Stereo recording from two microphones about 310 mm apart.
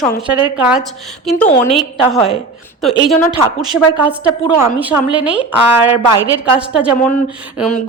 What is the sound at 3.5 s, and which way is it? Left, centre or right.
Speech, centre.